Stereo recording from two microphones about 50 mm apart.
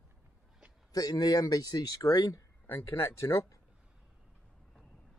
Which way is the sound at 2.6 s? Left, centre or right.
Left.